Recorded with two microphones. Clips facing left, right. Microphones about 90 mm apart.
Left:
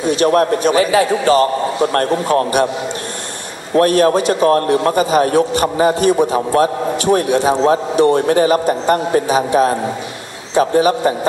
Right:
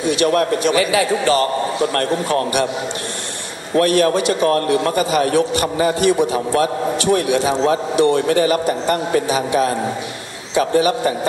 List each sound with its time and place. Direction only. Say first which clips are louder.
0.0 s a man's voice: left 3 dB; 40° left (ahead or behind)
3.7 s a man's voice: left 3 dB; 40° left (ahead or behind)